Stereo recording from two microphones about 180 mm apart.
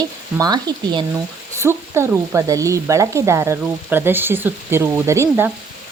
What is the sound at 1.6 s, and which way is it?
Sizzle, 15° right (ahead or behind).